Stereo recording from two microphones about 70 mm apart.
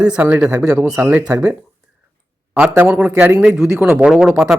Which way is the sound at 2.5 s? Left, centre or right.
Right.